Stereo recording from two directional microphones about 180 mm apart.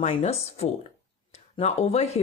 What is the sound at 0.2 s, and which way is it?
Speech, 35° left (ahead or behind).